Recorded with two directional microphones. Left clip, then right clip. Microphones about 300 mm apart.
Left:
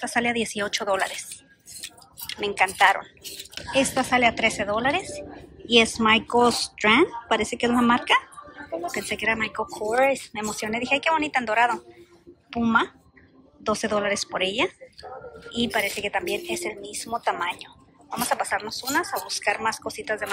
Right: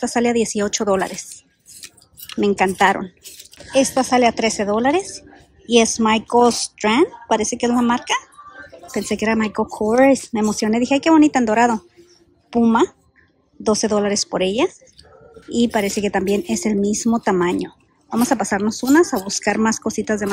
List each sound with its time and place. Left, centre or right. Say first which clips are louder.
0.0 s a woman's voice: right 6 dB; centre
2.5 s a woman's voice: right 2 dB; right
16.3 s speech: right 7 dB; right
17.6 s a woman's voice: right 5 dB; right